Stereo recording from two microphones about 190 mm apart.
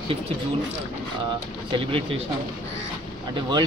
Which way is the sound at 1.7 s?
30° right (ahead or behind).